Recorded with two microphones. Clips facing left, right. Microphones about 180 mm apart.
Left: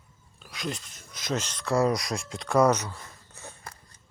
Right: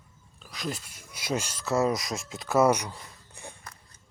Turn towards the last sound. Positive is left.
turn(degrees=-15)  # may be behind; listen again after turning